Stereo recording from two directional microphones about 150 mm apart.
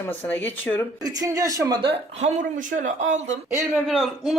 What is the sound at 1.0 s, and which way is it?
Speech, 25° right (ahead or behind).